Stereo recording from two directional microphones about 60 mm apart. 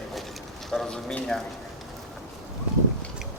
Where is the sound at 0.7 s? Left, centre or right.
Centre.